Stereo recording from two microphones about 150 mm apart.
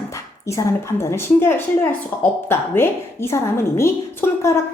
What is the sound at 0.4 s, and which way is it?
A woman's voice, 20° left (ahead or behind).